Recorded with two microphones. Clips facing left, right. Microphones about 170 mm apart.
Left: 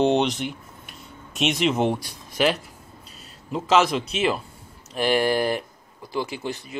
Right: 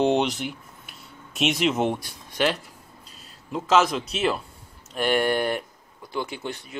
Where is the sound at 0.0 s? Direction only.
5° right (ahead or behind).